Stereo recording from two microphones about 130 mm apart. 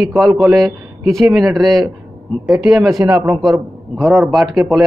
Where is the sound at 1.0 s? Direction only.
Centre (ahead or behind).